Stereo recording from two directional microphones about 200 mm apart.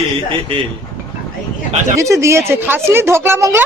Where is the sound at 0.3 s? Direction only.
25° right (ahead or behind).